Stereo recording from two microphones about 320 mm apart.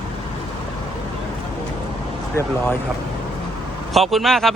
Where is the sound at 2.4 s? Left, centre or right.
Centre.